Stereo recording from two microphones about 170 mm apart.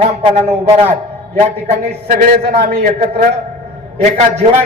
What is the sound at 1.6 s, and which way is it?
A man's voice, 50° right (ahead or behind).